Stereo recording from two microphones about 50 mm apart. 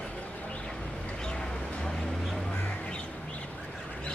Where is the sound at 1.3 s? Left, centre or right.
Centre.